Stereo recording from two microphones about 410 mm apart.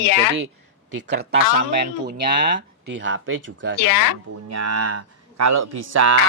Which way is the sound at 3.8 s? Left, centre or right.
Left.